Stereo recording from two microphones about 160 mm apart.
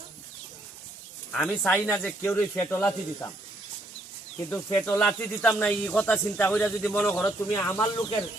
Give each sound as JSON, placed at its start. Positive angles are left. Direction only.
{"t": 1.3, "sound": "speech", "side_deg": 5}
{"t": 4.4, "sound": "speech", "side_deg": 10}